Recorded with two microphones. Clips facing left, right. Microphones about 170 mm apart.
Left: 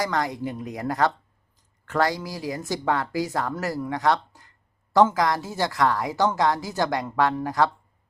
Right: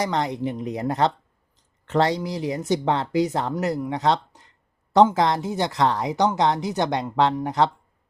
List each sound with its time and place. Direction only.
0.0 s a woman's voice: 20° right (ahead or behind)